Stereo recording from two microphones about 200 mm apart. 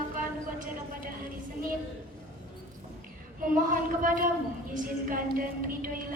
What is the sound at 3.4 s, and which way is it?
A woman's voice, 45° right (ahead or behind).